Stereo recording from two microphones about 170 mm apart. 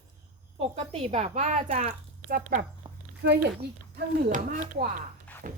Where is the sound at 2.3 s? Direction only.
55° right (ahead or behind).